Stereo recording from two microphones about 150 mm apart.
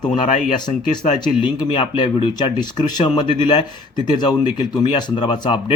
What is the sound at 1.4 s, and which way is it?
Speech, 35° left (ahead or behind).